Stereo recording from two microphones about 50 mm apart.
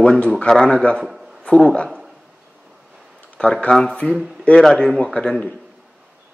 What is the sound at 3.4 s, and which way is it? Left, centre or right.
A man's voice, centre.